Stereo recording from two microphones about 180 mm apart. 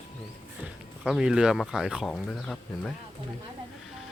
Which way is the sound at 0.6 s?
5° right (ahead or behind).